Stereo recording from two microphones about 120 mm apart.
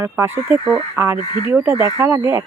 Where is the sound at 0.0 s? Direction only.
20° right (ahead or behind).